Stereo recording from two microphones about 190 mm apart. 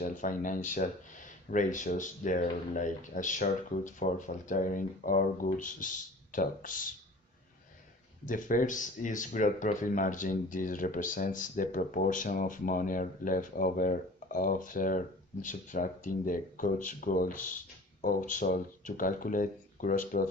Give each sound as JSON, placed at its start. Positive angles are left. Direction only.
{"t": 0.0, "sound": "speech", "side_deg": 45}
{"t": 8.2, "sound": "speech", "side_deg": 45}